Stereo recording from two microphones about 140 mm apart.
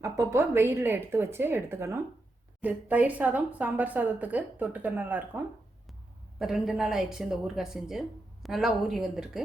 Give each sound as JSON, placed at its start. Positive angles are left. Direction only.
{"t": 0.0, "sound": "a woman's voice", "side_deg": -20}
{"t": 6.4, "sound": "a woman's voice", "side_deg": 0}